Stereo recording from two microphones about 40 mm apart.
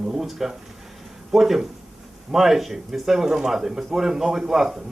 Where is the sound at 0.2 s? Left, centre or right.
Centre.